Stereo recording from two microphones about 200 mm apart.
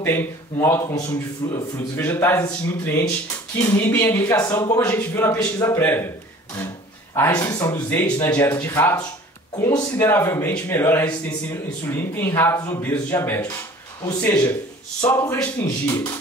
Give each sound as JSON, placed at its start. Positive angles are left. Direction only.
{"t": 0.0, "sound": "a man's voice", "side_deg": 10}
{"t": 7.2, "sound": "a man's voice", "side_deg": 15}